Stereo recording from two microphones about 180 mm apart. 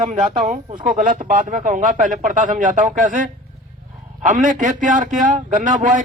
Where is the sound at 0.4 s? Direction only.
45° right (ahead or behind).